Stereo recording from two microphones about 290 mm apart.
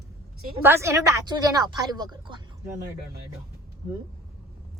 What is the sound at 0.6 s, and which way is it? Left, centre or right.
A woman's voice, centre.